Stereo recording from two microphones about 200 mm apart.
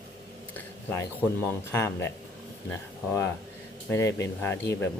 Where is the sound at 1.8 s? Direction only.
15° left (ahead or behind).